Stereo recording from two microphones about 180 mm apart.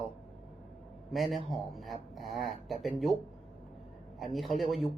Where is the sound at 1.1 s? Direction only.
Centre (ahead or behind).